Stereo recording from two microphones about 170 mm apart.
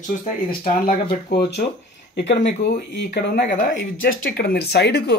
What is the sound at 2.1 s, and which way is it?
Speech, 90° left.